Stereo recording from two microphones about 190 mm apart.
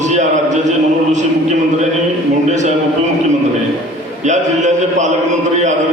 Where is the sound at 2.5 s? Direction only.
40° right (ahead or behind).